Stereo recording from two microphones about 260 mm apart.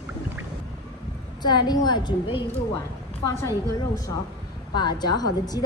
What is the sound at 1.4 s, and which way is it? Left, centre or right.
Speech, centre.